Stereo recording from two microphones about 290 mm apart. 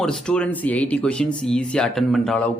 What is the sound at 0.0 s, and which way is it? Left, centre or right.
Speech, centre.